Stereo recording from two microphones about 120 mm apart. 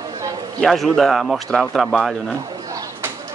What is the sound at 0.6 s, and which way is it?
Speech, centre (ahead or behind).